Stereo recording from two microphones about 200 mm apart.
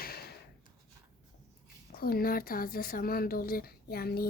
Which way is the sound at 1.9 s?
50° left (ahead or behind).